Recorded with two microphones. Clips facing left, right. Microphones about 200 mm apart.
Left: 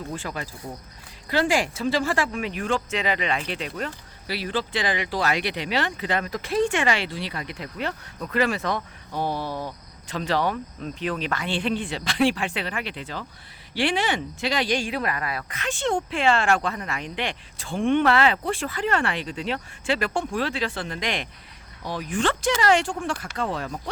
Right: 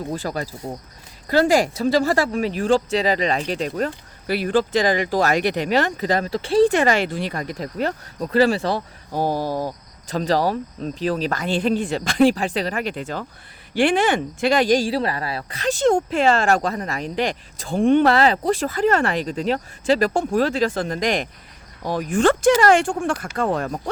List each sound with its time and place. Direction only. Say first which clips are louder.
0.1 s speech: right 6 dB; 40° right (ahead or behind)